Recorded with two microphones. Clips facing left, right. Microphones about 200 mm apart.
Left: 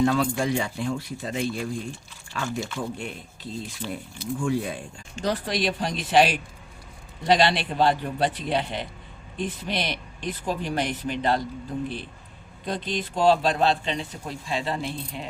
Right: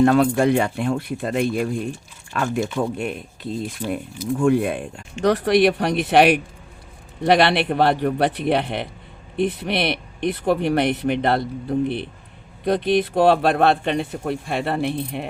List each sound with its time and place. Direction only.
0.0 s speech: 60° right (ahead or behind)
12.6 s speech: 60° right (ahead or behind)